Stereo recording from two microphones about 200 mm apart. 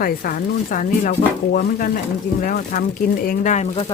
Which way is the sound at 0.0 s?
45° left (ahead or behind).